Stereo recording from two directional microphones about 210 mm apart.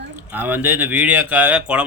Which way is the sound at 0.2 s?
10° right (ahead or behind).